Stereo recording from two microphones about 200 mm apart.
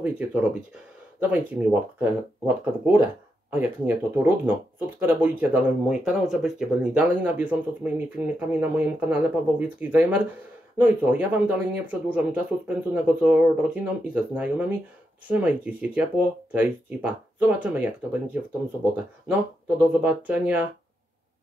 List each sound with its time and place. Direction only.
0.0 s speech: 5° right (ahead or behind)